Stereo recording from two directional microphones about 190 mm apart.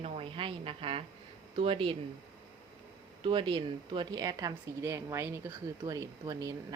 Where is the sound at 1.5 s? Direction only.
30° right (ahead or behind).